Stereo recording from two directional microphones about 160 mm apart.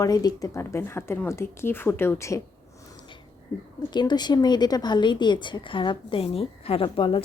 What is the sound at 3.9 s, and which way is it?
Speech, 25° left (ahead or behind).